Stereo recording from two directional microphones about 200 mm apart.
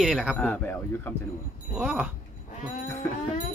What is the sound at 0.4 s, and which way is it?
Speech, 10° left (ahead or behind).